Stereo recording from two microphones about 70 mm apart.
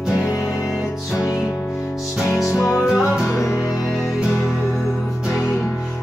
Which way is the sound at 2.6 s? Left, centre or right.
Centre.